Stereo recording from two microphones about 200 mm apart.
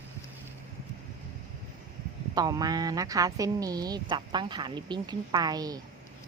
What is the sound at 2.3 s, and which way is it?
Speech, 20° right (ahead or behind).